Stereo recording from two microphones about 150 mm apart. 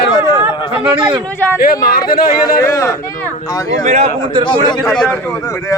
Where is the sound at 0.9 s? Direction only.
30° right (ahead or behind).